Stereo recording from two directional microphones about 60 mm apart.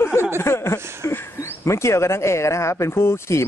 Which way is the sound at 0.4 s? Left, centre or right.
Left.